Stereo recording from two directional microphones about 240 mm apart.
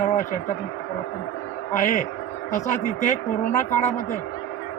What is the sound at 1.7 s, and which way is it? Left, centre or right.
A woman's voice, left.